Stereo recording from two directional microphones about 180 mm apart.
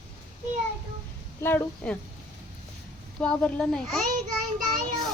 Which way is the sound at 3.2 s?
5° left (ahead or behind).